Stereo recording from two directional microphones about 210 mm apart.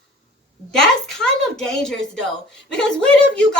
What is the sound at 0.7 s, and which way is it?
Speech, 5° left (ahead or behind).